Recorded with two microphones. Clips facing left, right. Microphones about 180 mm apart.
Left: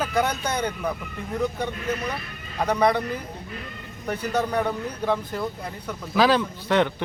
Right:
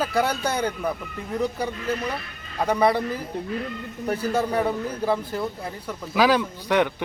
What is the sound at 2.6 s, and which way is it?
Speech, 5° right (ahead or behind).